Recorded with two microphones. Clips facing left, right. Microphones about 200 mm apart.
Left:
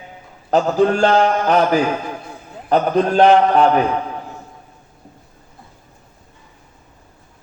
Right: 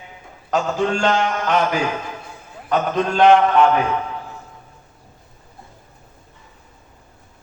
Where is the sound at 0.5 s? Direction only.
35° left (ahead or behind).